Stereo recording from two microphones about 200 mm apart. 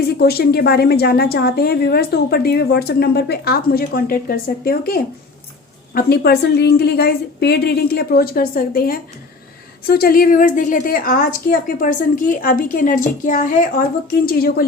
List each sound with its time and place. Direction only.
0.0 s a woman's voice: 50° left (ahead or behind)